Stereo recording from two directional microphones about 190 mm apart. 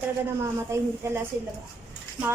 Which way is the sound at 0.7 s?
15° right (ahead or behind).